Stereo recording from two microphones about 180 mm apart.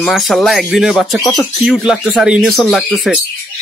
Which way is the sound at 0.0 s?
Centre (ahead or behind).